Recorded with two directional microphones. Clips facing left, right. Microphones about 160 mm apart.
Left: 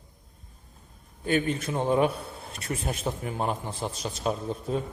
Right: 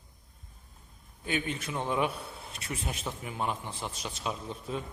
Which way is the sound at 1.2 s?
45° left (ahead or behind).